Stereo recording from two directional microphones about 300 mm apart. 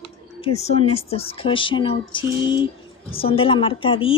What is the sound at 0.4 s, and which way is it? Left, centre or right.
Speech, left.